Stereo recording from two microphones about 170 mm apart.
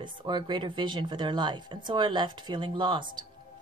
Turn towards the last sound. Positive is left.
turn(degrees=-30)  # may be behind; listen again after turning